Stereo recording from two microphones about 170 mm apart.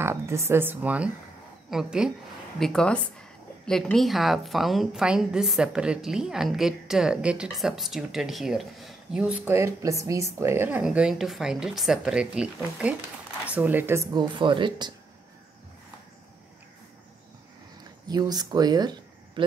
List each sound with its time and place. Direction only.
0.0 s a woman's voice: 15° right (ahead or behind)
9.5 s a woman's voice: 15° right (ahead or behind)
14.1 s speech: 30° right (ahead or behind)
18.0 s speech: 25° right (ahead or behind)